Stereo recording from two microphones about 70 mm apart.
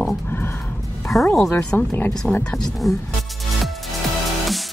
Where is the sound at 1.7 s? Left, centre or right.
Left.